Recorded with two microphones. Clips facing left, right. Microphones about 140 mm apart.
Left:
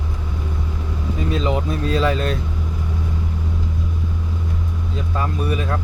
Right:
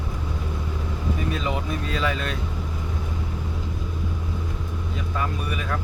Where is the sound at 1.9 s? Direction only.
35° left (ahead or behind).